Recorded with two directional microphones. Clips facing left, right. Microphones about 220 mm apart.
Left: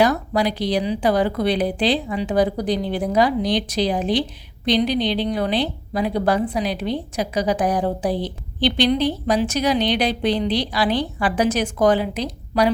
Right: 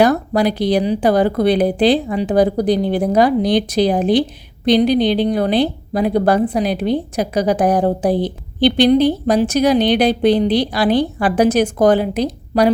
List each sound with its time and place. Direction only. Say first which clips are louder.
0.0 s a woman's voice: right 5 dB; 55° right (ahead or behind)